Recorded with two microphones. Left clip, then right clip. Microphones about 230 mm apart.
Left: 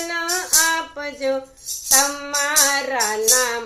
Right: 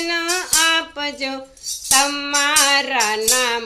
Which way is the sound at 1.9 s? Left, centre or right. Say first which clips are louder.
Right 2 dB; right.